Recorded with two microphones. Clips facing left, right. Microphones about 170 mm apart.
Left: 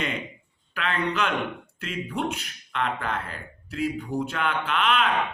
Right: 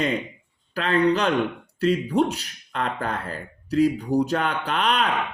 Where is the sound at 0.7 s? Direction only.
35° right (ahead or behind).